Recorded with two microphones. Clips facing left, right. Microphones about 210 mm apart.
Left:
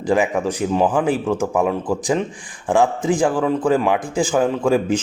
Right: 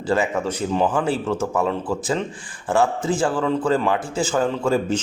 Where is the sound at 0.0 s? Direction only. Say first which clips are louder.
Left 3 dB; 15° left (ahead or behind).